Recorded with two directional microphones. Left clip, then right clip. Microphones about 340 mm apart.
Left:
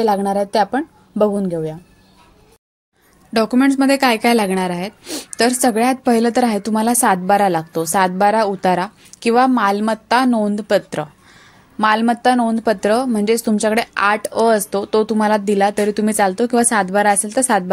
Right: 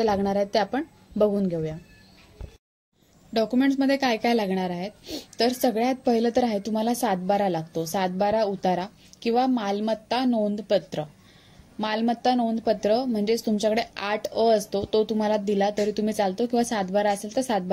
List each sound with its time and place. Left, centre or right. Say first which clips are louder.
0.0 s speech: left 7 dB; right
3.3 s speech: left 8 dB; right